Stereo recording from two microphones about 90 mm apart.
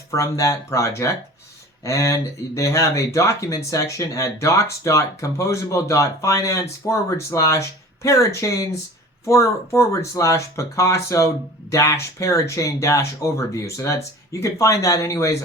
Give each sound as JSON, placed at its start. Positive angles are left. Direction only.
{"t": 0.1, "sound": "speech", "side_deg": 35}